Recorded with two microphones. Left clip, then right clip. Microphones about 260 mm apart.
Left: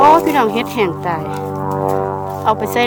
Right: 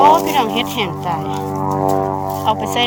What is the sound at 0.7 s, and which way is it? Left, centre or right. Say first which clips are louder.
Speech: left 2 dB; centre.